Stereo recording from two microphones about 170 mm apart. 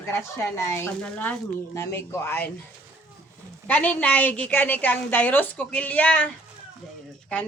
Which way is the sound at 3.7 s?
10° left (ahead or behind).